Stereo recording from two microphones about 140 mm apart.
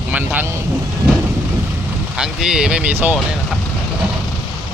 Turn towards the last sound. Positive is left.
turn(degrees=-10)  # may be behind; listen again after turning